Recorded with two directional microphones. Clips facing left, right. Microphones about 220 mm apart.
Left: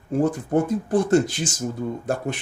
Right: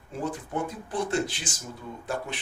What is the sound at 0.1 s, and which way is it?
Speech, 45° left (ahead or behind).